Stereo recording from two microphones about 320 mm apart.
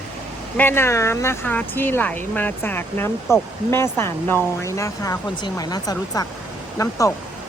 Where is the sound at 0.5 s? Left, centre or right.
Centre.